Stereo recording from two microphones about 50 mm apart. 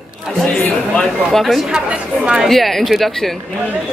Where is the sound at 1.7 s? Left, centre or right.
Centre.